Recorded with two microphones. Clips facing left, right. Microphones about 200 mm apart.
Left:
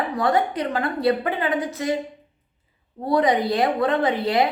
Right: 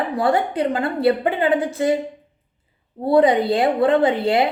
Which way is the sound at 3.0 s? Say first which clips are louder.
Right 4 dB; 30° right (ahead or behind).